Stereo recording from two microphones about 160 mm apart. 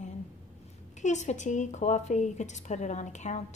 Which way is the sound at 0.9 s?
45° left (ahead or behind).